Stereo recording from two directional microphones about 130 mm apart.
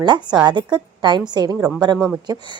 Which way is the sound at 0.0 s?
35° right (ahead or behind).